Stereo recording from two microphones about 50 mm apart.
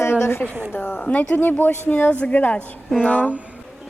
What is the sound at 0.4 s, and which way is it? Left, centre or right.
Speech, right.